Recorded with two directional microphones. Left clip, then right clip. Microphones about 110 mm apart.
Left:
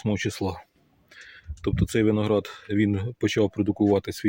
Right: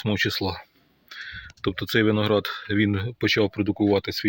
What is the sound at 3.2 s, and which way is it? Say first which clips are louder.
Speech: right 2 dB; 40° left (ahead or behind).